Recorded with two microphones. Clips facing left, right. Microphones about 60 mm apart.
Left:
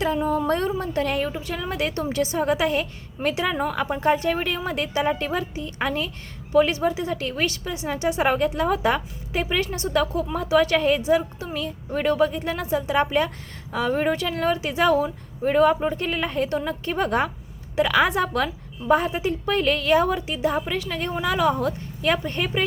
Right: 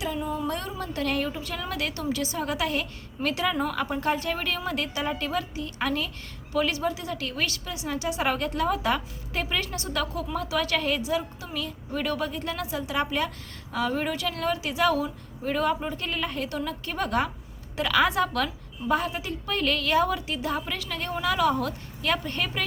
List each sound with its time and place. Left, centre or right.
0.0 s speech: left
0.7 s a woman's voice: left